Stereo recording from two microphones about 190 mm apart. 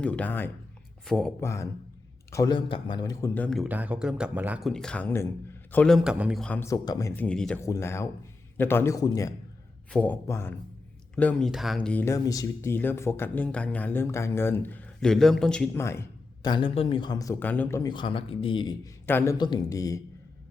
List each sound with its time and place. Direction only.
0.0 s a man's voice: 5° left (ahead or behind)
1.4 s a man's voice: 15° left (ahead or behind)
3.7 s speech: 10° right (ahead or behind)
4.7 s a man's voice: 5° left (ahead or behind)
6.4 s speech: 10° left (ahead or behind)
19.0 s speech: 10° left (ahead or behind)